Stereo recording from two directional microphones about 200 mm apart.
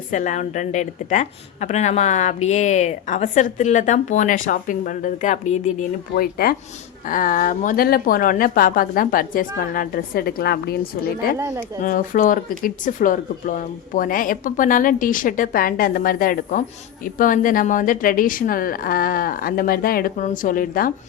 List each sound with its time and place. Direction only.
0.1 s a woman's voice: 35° left (ahead or behind)
11.3 s speech: 15° right (ahead or behind)
11.8 s speech: 40° left (ahead or behind)